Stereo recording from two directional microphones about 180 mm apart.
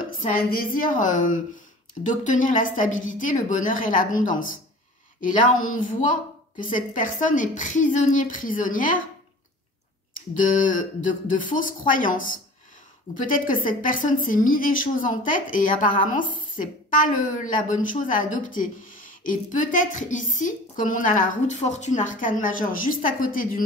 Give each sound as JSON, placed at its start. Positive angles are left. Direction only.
{"t": 0.0, "sound": "a woman's voice", "side_deg": 50}
{"t": 5.5, "sound": "a woman's voice", "side_deg": 45}
{"t": 10.3, "sound": "a woman's voice", "side_deg": 45}
{"t": 13.3, "sound": "a woman's voice", "side_deg": 50}